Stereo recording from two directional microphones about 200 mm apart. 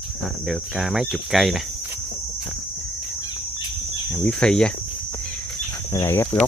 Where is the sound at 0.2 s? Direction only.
Centre (ahead or behind).